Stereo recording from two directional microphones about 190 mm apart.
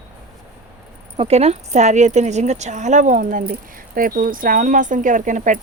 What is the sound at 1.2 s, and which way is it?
Speech, 35° right (ahead or behind).